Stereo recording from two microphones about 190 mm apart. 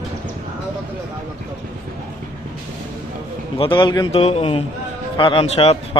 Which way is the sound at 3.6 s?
25° left (ahead or behind).